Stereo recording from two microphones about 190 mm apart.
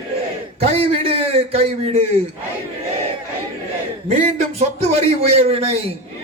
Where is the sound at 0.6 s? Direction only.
30° right (ahead or behind).